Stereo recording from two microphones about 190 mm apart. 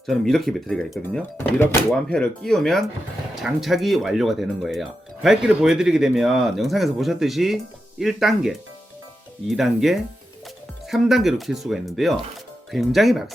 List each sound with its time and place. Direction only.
0.0 s speech: centre (ahead or behind)